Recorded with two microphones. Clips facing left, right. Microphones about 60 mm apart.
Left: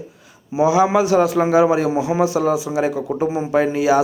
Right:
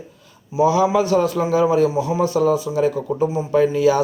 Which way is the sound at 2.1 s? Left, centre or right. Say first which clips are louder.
Left 2 dB; left.